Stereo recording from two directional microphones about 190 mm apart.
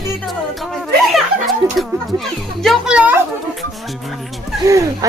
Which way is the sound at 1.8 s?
Centre (ahead or behind).